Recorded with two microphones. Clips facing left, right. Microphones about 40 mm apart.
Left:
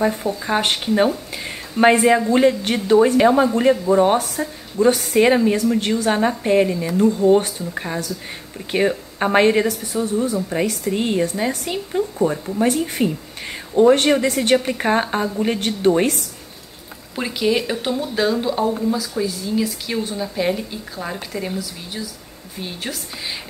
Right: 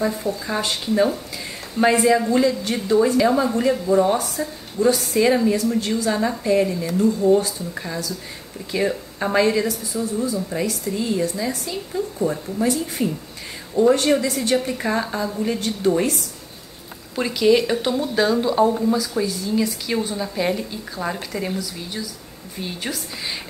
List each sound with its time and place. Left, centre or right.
0.0 s speech: left
17.1 s speech: centre